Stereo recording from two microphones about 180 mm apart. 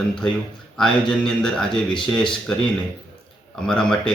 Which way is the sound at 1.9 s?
25° left (ahead or behind).